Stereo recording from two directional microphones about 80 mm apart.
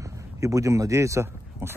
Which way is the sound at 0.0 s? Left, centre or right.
Right.